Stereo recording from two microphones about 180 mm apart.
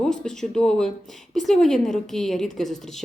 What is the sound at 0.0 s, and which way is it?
A woman's voice, 5° left (ahead or behind).